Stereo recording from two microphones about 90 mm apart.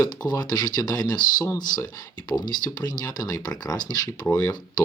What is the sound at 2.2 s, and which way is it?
Speech, 50° left (ahead or behind).